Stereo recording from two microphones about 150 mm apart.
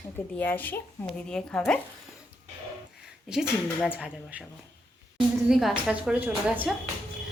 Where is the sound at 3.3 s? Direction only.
5° right (ahead or behind).